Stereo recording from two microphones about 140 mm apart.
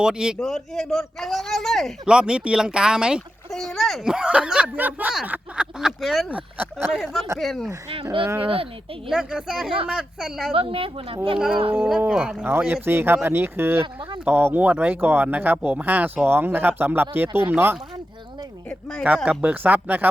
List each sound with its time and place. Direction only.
0.0 s a man's voice: 5° right (ahead or behind)
6.9 s a man's voice: centre (ahead or behind)
8.2 s speech: 15° right (ahead or behind)
8.4 s a woman's voice: 40° right (ahead or behind)
9.0 s a man's voice: 5° right (ahead or behind)
10.5 s a woman's voice: 40° right (ahead or behind)
11.3 s a man's voice: 5° right (ahead or behind)
13.8 s a woman's voice: 35° right (ahead or behind)
14.3 s speech: 15° right (ahead or behind)
18.7 s a man's voice: 5° left (ahead or behind)
19.0 s speech: 10° right (ahead or behind)